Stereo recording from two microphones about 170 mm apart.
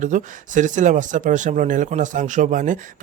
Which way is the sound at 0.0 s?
50° right (ahead or behind).